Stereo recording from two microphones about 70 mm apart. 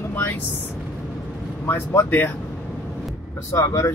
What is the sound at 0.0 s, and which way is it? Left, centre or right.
Speech, left.